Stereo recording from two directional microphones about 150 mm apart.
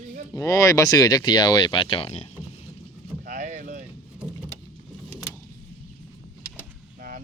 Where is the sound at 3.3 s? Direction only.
55° right (ahead or behind).